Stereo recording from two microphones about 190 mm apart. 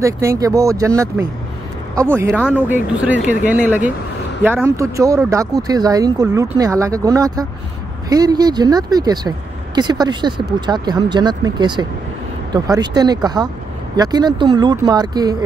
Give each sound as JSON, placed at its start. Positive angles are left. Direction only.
{"t": 0.0, "sound": "speech", "side_deg": -15}